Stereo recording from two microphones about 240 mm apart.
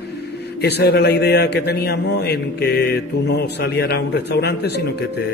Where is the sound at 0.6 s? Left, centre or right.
Left.